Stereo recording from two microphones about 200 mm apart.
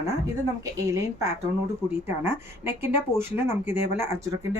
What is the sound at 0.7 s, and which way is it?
Speech, 15° right (ahead or behind).